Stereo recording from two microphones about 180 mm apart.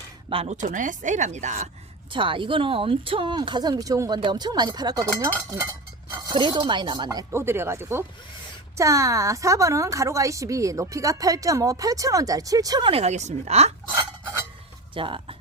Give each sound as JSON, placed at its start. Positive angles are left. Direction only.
{"t": 0.3, "sound": "a woman's voice", "side_deg": -35}
{"t": 2.0, "sound": "a woman's voice", "side_deg": -30}
{"t": 6.2, "sound": "a woman's voice", "side_deg": -25}
{"t": 13.8, "sound": "cutlery", "side_deg": -10}
{"t": 14.9, "sound": "speech", "side_deg": -30}